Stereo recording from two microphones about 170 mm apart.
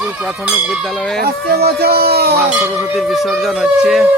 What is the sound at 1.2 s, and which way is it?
Speech, 70° right (ahead or behind).